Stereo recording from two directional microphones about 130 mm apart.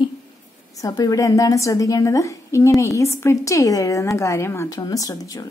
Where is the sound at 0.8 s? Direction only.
30° left (ahead or behind).